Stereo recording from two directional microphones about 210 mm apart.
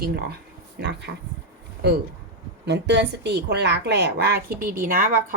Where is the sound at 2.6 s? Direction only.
55° right (ahead or behind).